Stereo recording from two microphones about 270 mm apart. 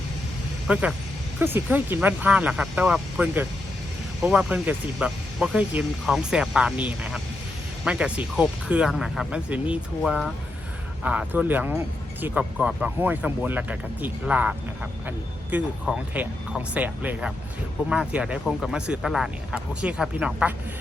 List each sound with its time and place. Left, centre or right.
0.7 s speech: centre